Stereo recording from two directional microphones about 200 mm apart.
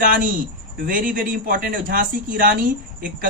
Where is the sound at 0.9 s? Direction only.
40° right (ahead or behind).